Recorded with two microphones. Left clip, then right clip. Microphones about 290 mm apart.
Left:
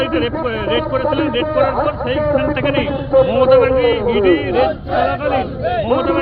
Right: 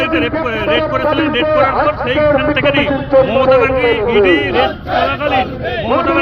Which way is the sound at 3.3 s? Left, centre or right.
Centre.